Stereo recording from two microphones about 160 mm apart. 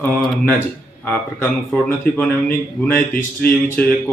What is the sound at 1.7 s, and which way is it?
A man's voice, 10° left (ahead or behind).